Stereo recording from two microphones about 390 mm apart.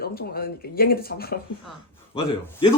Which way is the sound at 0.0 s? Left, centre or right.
Left.